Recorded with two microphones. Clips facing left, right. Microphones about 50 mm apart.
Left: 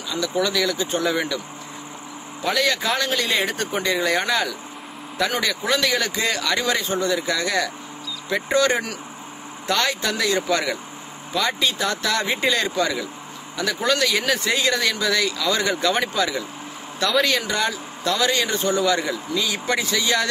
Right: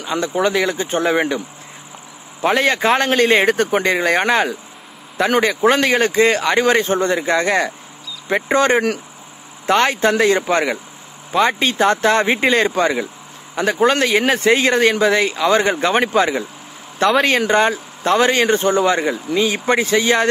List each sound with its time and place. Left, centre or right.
0.0 s speech: right
2.4 s speech: right